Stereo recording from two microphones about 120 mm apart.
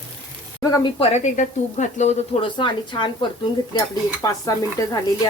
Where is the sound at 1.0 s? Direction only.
60° left (ahead or behind).